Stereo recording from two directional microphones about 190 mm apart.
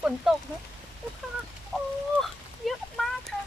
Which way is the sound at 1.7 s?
Centre (ahead or behind).